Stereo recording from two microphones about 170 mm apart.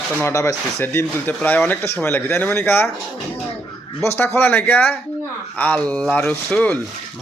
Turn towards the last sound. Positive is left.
turn(degrees=5)  # may be behind; listen again after turning